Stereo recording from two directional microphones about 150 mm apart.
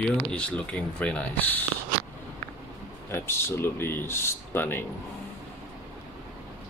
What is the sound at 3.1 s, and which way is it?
Speech, 15° left (ahead or behind).